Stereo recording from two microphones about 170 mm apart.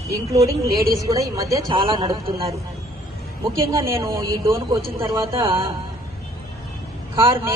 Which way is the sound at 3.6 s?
15° right (ahead or behind).